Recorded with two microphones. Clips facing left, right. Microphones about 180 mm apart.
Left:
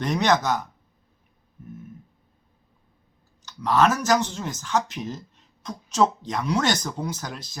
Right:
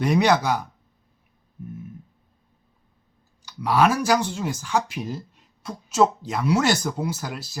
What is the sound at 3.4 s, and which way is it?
Speech, 10° right (ahead or behind).